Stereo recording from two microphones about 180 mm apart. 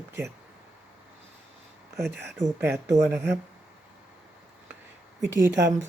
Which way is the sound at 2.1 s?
70° right (ahead or behind).